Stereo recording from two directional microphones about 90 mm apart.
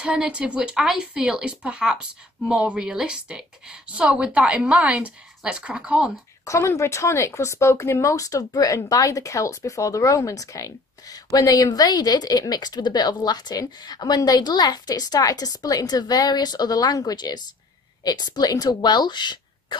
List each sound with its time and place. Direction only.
0.0 s speech: 10° right (ahead or behind)
6.4 s a woman's voice: 35° left (ahead or behind); by 19.8 s 55° left (ahead or behind)